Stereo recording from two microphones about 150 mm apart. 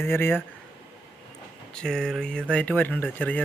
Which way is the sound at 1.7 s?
5° left (ahead or behind).